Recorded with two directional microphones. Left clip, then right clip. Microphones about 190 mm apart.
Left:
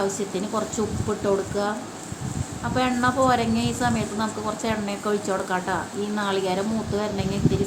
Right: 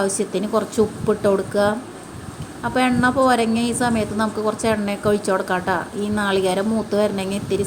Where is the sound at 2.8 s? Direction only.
35° right (ahead or behind).